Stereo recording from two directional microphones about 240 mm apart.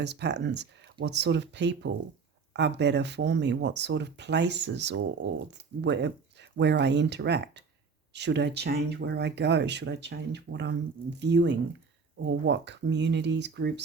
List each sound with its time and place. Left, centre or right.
0.0 s speech: right